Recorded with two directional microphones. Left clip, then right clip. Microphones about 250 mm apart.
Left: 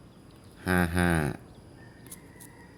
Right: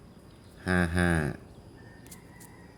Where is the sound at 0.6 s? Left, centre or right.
Centre.